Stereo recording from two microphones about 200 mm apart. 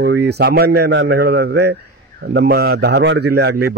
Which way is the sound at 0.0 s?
55° right (ahead or behind).